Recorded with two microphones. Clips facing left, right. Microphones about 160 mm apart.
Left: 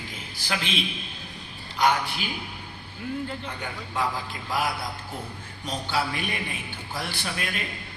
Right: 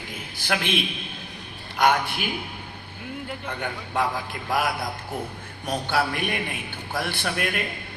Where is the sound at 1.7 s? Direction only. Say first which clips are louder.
Right 2 dB; 55° right (ahead or behind).